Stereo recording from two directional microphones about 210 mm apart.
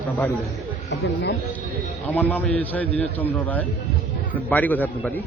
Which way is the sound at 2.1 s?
10° left (ahead or behind).